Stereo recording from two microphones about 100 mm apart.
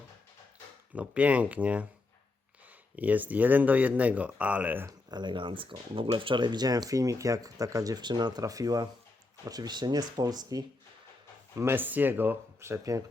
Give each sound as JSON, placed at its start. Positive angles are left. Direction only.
{"t": 0.9, "sound": "speech", "side_deg": -15}
{"t": 2.9, "sound": "speech", "side_deg": -15}
{"t": 4.9, "sound": "speech", "side_deg": -45}
{"t": 11.5, "sound": "speech", "side_deg": -25}